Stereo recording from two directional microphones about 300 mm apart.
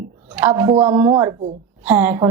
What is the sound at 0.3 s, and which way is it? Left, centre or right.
A woman's voice, centre.